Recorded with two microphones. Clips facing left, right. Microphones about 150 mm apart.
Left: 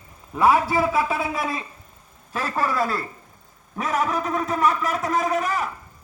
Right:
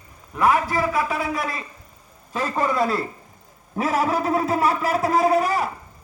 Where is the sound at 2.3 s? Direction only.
15° right (ahead or behind).